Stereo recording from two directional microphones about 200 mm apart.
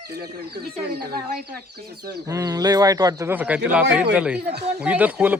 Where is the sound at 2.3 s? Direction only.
15° right (ahead or behind).